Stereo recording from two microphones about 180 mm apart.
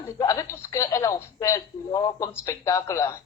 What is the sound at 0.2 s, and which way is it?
Speech, 20° left (ahead or behind).